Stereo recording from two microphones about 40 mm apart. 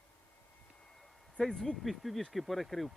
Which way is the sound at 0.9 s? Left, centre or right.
Centre.